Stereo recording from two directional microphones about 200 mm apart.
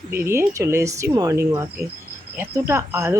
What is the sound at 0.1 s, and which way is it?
Speech, 10° right (ahead or behind).